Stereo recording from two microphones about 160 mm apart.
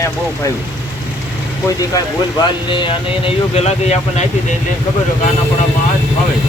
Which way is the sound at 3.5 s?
45° left (ahead or behind).